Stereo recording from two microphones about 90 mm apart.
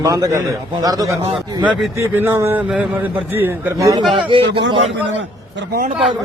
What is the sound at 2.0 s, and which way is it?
A man's voice, 30° right (ahead or behind).